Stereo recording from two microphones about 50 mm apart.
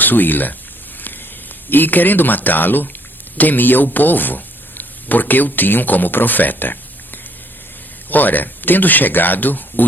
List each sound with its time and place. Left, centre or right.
0.0 s speech: left
1.7 s speech: left